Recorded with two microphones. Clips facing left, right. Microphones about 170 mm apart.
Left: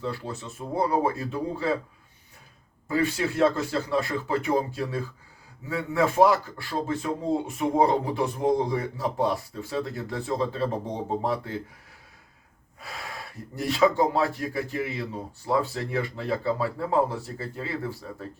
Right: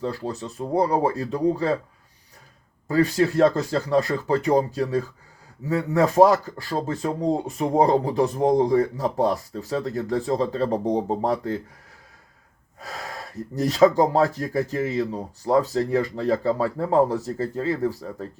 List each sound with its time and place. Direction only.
0.0 s speech: 35° right (ahead or behind)
2.8 s speech: 40° right (ahead or behind)
12.8 s speech: 40° right (ahead or behind)